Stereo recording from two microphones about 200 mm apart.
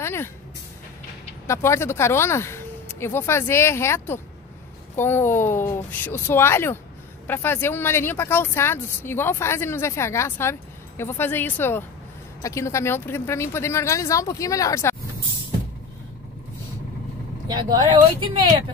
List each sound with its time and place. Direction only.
0.0 s vehicle: 10° left (ahead or behind)
1.5 s speech: 15° left (ahead or behind)
17.5 s speech: 20° right (ahead or behind)